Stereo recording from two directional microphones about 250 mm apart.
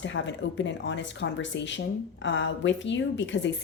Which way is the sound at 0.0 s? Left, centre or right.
Left.